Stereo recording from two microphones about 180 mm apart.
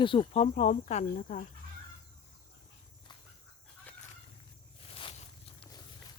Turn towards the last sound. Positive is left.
turn(degrees=30)  # may be behind; listen again after turning